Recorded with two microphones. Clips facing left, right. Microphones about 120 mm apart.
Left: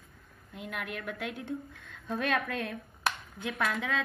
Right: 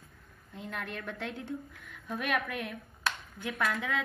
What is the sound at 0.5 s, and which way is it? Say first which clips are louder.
Speech: left 1 dB; 10° left (ahead or behind).